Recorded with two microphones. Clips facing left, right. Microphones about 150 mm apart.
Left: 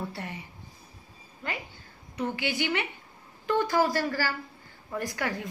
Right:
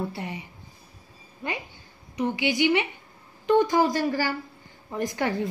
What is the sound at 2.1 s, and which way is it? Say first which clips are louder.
A woman's voice: right 5 dB; 15° right (ahead or behind).